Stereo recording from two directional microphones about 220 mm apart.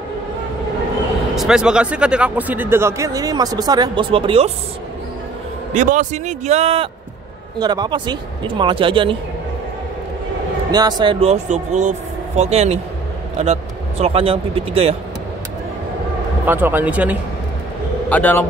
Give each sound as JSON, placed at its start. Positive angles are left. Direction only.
{"t": 1.3, "sound": "speech", "side_deg": 0}
{"t": 5.7, "sound": "a man's voice", "side_deg": -35}
{"t": 10.7, "sound": "speech", "side_deg": -20}
{"t": 16.4, "sound": "speech", "side_deg": -10}
{"t": 18.1, "sound": "a man's voice", "side_deg": 5}